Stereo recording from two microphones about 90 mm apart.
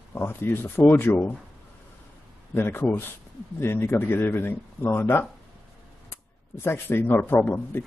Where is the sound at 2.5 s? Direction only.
25° left (ahead or behind).